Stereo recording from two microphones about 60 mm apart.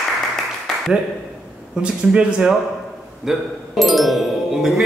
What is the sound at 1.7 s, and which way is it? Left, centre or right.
Speech, centre.